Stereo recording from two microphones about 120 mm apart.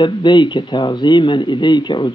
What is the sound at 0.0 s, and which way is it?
Speech, 40° left (ahead or behind).